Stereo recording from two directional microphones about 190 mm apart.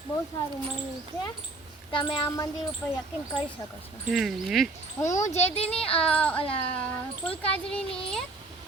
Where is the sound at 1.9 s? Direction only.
25° left (ahead or behind).